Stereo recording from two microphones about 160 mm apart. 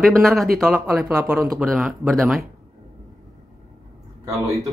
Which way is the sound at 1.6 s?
Centre (ahead or behind).